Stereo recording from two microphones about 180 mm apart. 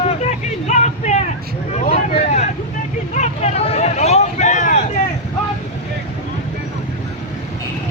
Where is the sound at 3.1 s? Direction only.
40° left (ahead or behind).